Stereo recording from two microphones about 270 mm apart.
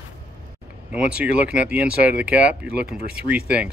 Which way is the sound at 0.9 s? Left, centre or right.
Centre.